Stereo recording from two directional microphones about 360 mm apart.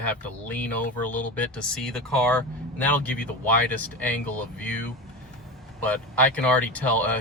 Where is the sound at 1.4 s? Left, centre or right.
Centre.